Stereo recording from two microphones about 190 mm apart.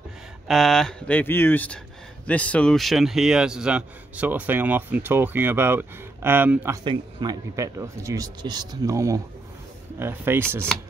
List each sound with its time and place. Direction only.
0.5 s a man's voice: centre (ahead or behind)
6.8 s a man's voice: 25° right (ahead or behind)